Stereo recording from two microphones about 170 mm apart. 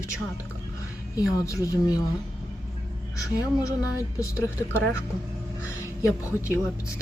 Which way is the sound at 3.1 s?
20° left (ahead or behind).